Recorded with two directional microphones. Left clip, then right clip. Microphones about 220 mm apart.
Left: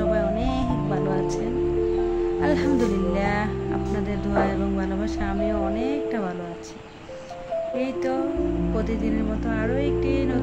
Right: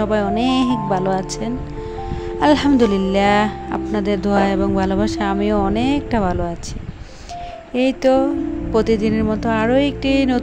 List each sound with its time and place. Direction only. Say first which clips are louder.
0.1 s music: right 6 dB; 35° right (ahead or behind)
2.4 s speech: right 11 dB; 35° right (ahead or behind)
7.7 s speech: right 14 dB; 35° right (ahead or behind)